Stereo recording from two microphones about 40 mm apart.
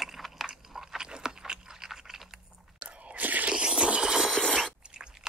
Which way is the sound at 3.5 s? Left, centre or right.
Right.